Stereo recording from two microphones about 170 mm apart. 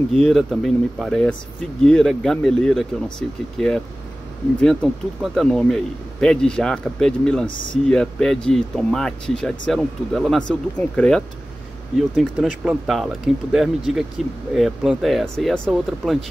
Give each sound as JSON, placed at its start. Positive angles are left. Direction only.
{"t": 0.1, "sound": "speech", "side_deg": 0}